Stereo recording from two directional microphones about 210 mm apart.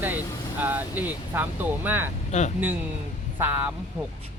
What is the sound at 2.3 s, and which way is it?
Speech, 35° left (ahead or behind).